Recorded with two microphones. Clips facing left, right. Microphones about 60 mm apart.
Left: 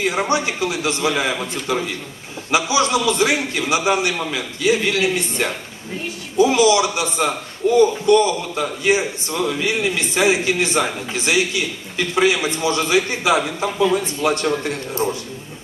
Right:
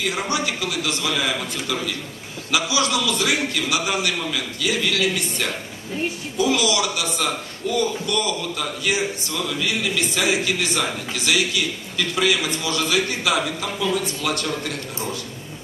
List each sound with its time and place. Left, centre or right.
0.0 s a man's voice: left